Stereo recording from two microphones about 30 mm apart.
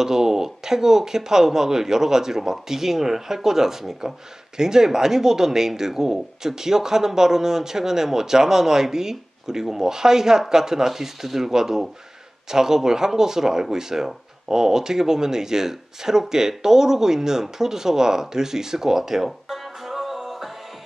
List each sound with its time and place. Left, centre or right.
0.0 s speech: centre